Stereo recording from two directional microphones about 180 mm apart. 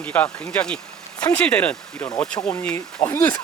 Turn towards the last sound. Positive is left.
turn(degrees=10)  # may be behind; listen again after turning